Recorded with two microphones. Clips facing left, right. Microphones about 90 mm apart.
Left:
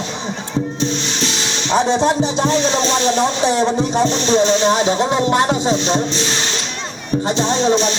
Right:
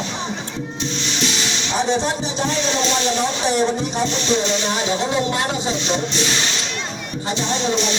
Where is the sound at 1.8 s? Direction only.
35° left (ahead or behind).